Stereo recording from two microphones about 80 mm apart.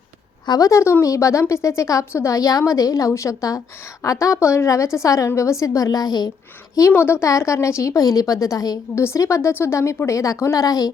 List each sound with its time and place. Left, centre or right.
0.4 s a woman's voice: left
0.7 s a woman's voice: left
6.9 s a woman's voice: left
9.0 s a woman's voice: left